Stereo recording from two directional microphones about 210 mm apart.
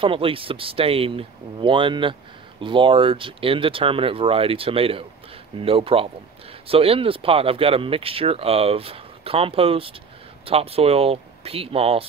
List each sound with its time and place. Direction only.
0.0 s speech: 25° right (ahead or behind)